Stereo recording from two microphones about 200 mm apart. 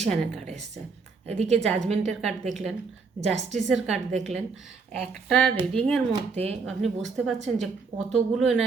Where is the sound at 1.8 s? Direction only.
35° right (ahead or behind).